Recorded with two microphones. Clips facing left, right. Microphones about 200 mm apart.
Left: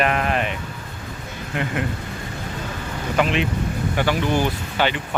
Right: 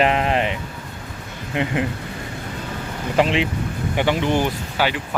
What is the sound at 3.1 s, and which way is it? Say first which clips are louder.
Speech: right 2 dB; 30° right (ahead or behind).